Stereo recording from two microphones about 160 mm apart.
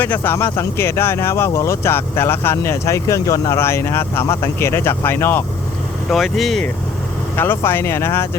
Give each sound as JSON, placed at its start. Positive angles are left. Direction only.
{"t": 0.0, "sound": "speech", "side_deg": 10}
{"t": 6.1, "sound": "speech", "side_deg": 0}
{"t": 7.3, "sound": "speech", "side_deg": 15}